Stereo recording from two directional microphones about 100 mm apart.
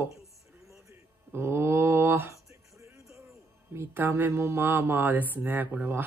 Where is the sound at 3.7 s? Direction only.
25° right (ahead or behind).